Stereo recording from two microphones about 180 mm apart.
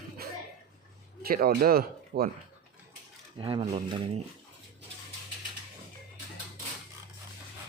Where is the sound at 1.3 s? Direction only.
55° right (ahead or behind).